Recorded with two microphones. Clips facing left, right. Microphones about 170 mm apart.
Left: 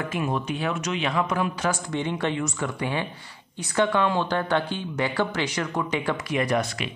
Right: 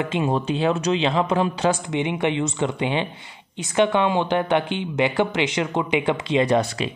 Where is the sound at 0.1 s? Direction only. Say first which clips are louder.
Right 5 dB; 25° right (ahead or behind).